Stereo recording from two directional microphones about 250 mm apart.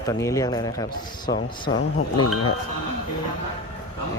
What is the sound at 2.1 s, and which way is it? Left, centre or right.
Speech, left.